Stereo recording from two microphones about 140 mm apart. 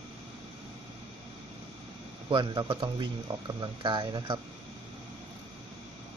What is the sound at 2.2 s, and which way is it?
Speech, 35° right (ahead or behind).